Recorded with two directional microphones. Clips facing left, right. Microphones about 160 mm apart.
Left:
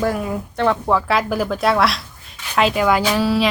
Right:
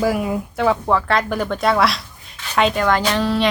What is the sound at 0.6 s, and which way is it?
Speech, centre (ahead or behind).